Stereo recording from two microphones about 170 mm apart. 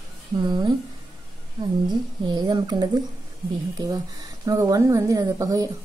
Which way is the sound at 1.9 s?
25° right (ahead or behind).